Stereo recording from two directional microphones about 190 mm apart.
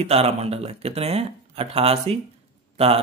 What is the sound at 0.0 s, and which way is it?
A man's voice, 35° right (ahead or behind).